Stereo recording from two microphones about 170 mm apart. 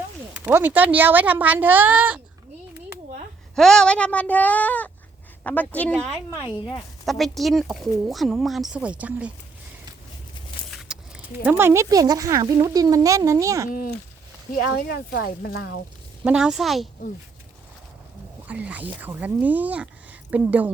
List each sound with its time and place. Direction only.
0.4 s speech: 10° right (ahead or behind)
3.5 s a woman's voice: 5° left (ahead or behind)
7.0 s speech: centre (ahead or behind)
10.9 s a sound: 5° right (ahead or behind)
11.4 s speech: 10° right (ahead or behind)
13.7 s speech: 55° left (ahead or behind)
14.5 s speech: 65° left (ahead or behind)
16.2 s speech: 5° right (ahead or behind)
18.4 s speech: 10° right (ahead or behind)